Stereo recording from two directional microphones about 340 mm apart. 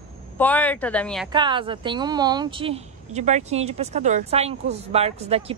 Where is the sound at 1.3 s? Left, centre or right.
Centre.